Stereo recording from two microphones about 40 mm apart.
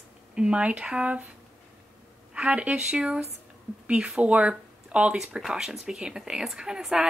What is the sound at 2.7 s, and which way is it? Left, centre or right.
A woman's voice, right.